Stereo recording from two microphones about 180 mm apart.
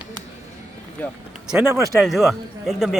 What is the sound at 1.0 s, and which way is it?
Speech, 10° left (ahead or behind).